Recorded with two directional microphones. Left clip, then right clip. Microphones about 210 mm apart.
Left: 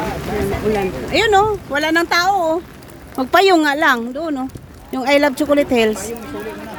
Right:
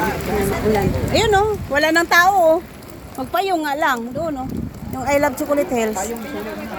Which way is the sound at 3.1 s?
50° left (ahead or behind).